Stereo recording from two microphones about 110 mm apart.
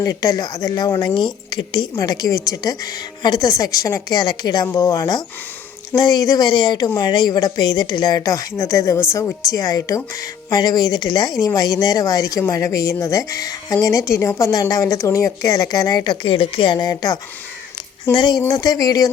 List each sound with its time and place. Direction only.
0.0 s a woman's voice: 35° left (ahead or behind)
16.2 s a woman's voice: 55° left (ahead or behind); by 19.1 s 35° left (ahead or behind)